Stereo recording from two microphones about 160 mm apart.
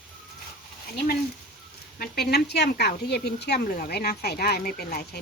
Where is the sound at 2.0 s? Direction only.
75° left (ahead or behind).